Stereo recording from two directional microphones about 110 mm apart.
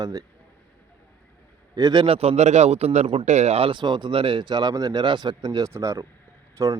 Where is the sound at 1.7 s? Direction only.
40° right (ahead or behind).